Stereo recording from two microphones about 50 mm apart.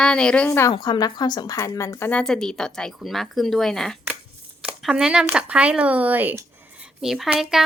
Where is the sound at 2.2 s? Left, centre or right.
Centre.